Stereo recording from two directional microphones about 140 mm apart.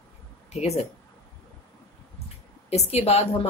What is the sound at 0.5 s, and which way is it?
Speech, 50° left (ahead or behind).